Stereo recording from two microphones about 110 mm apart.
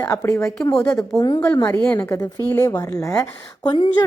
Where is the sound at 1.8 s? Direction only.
15° left (ahead or behind).